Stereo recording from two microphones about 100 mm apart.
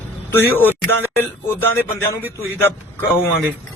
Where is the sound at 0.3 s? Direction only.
20° left (ahead or behind).